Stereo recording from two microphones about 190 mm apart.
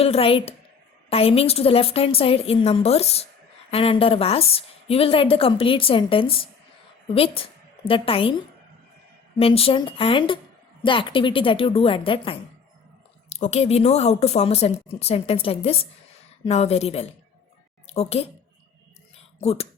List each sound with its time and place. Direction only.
0.0 s a woman's voice: 30° left (ahead or behind)
7.9 s a woman's voice: 30° left (ahead or behind)
9.4 s a woman's voice: 30° left (ahead or behind)
19.4 s speech: 35° left (ahead or behind)